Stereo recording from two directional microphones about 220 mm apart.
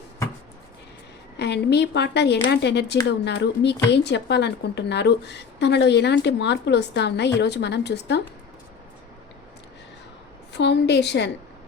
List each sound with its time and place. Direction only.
1.4 s a woman's voice: 50° left (ahead or behind)
10.6 s a woman's voice: 55° left (ahead or behind)